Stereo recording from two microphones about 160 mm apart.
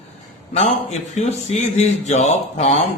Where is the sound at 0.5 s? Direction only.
45° left (ahead or behind).